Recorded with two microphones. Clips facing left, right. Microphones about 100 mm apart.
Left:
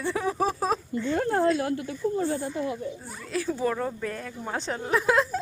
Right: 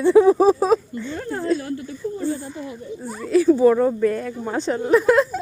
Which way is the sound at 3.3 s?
5° right (ahead or behind).